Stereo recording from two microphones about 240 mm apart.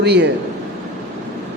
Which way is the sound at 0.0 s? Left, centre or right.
Right.